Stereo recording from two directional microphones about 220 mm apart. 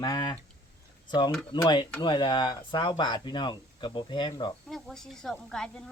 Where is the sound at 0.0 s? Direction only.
20° left (ahead or behind).